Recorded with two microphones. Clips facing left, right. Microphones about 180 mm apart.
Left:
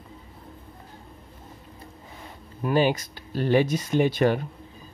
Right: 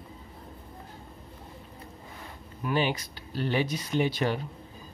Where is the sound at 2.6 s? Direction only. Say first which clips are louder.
Left 6 dB; 45° left (ahead or behind).